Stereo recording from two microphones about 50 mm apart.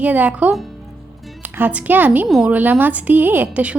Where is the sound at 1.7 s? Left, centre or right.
Right.